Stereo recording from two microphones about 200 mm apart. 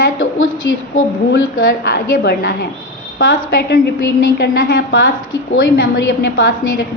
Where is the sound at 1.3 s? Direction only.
55° left (ahead or behind).